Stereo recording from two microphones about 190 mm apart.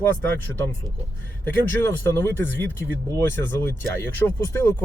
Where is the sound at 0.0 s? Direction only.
10° left (ahead or behind).